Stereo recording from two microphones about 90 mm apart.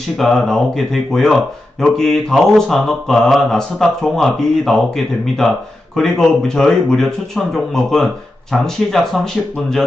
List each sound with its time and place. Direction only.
0.2 s speech: 5° left (ahead or behind)